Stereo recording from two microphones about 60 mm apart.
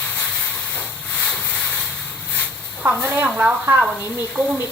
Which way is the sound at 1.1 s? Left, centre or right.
Centre.